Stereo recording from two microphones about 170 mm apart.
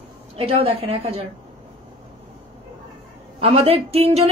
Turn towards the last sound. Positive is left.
turn(degrees=-35)  # may be behind; listen again after turning